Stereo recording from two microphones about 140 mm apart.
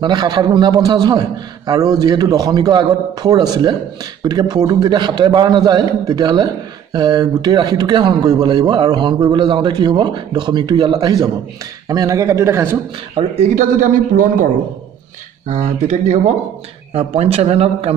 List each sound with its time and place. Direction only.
0.0 s a man's voice: 30° right (ahead or behind)
13.1 s speech: 55° right (ahead or behind)
15.4 s speech: 60° right (ahead or behind)
16.9 s a man's voice: 45° right (ahead or behind)